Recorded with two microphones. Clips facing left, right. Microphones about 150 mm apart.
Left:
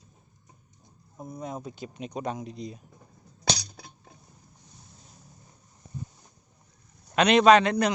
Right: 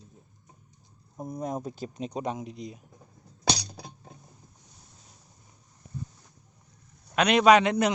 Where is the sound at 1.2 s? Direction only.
40° right (ahead or behind).